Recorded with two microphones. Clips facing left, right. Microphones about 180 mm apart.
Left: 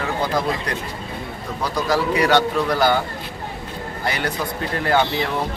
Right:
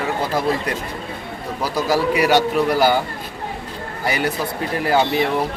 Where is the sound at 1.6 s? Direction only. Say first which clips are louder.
Right 2 dB; 10° right (ahead or behind).